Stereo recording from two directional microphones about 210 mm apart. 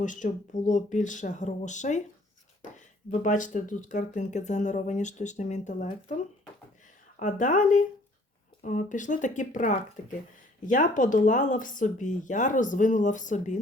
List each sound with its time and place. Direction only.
0.0 s speech: 35° left (ahead or behind)